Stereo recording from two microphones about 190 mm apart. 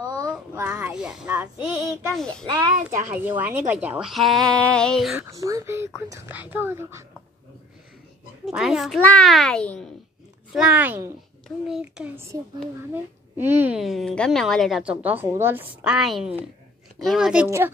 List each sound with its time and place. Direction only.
0.0 s child singing: 20° right (ahead or behind)
0.7 s child singing: 5° right (ahead or behind)
2.1 s a woman's voice: 5° left (ahead or behind)
3.1 s a woman's voice: 10° right (ahead or behind)
5.3 s speech: 15° right (ahead or behind)
8.5 s a woman's voice: centre (ahead or behind)